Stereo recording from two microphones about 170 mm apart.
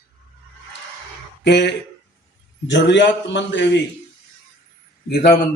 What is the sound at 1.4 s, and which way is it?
Speech, 90° left.